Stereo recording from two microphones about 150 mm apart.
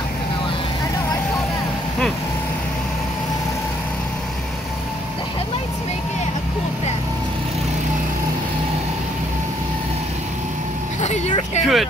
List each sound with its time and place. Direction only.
11.0 s vehicle: 50° left (ahead or behind)
11.6 s vehicle: centre (ahead or behind)